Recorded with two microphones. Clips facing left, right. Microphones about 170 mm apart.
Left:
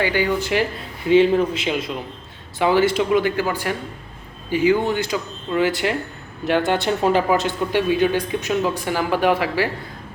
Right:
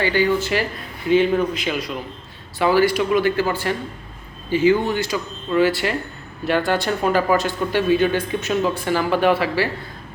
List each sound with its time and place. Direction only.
0.0 s speech: 15° left (ahead or behind)
1.1 s speech: 30° left (ahead or behind)